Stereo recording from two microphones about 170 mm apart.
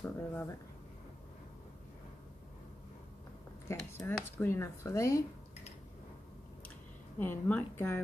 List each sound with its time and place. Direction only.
0.0 s speech: 10° left (ahead or behind)
3.6 s speech: 15° left (ahead or behind)
7.2 s speech: 10° left (ahead or behind)